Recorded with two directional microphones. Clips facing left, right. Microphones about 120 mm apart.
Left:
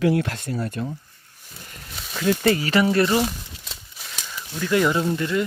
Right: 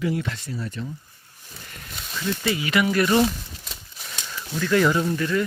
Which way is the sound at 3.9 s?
5° left (ahead or behind).